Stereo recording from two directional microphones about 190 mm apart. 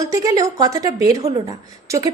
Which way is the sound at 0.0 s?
15° right (ahead or behind).